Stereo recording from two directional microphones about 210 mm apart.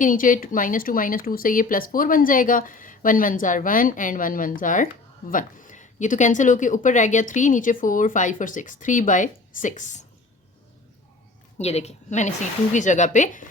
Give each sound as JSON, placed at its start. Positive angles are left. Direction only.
{"t": 0.0, "sound": "speech", "side_deg": 40}
{"t": 11.5, "sound": "a woman's voice", "side_deg": 30}